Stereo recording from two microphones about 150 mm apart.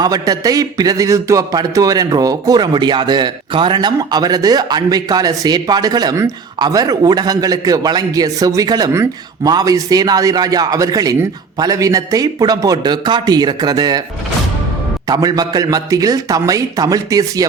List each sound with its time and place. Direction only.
0.0 s a man's voice: 25° right (ahead or behind)
15.0 s a man's voice: 25° right (ahead or behind)